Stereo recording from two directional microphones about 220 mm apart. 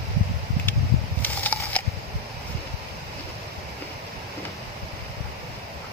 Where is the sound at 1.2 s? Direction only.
5° left (ahead or behind).